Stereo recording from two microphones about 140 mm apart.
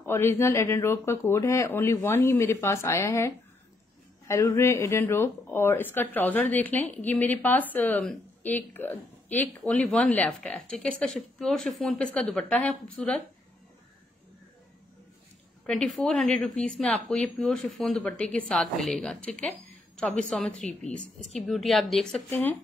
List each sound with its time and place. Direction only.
0.0 s speech: 20° left (ahead or behind)
9.6 s a woman's voice: 5° left (ahead or behind)
15.6 s a woman's voice: 5° left (ahead or behind)